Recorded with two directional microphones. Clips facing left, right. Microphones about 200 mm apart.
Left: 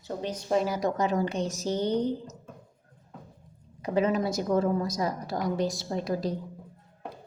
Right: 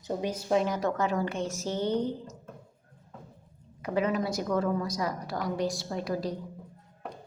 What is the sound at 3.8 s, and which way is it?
A woman's voice, 25° left (ahead or behind).